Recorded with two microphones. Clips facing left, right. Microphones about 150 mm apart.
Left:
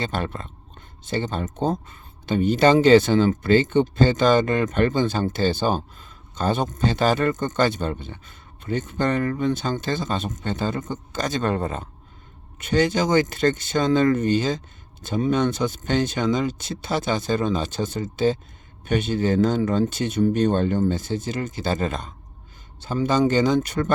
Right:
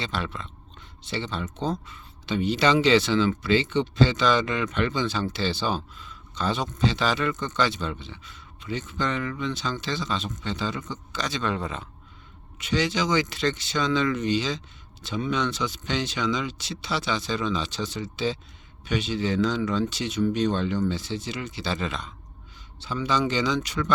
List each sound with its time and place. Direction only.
0.0 s speech: 50° left (ahead or behind)